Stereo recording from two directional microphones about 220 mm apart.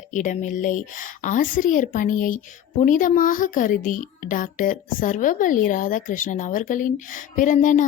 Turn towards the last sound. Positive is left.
turn(degrees=35)  # may be behind; listen again after turning